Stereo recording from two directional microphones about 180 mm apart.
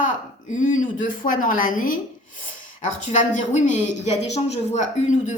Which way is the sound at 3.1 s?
45° left (ahead or behind).